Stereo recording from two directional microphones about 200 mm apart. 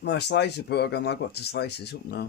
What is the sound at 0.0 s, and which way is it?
Speech, 60° left (ahead or behind).